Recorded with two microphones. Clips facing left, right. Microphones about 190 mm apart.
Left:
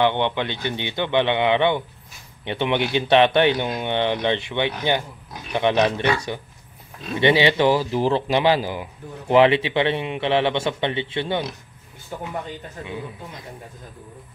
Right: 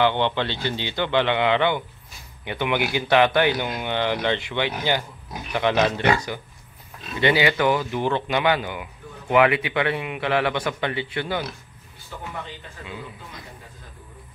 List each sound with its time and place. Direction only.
0.0 s a man's voice: 20° left (ahead or behind)
12.1 s speech: 45° left (ahead or behind)